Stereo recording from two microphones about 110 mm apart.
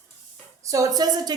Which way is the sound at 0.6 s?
30° right (ahead or behind).